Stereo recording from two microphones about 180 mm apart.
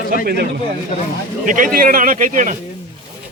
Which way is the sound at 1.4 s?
50° right (ahead or behind).